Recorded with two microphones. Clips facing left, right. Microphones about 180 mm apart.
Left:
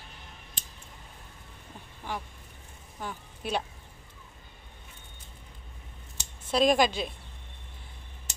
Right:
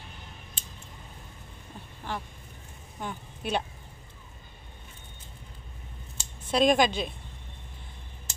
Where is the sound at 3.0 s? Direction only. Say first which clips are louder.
Right 1 dB; centre (ahead or behind).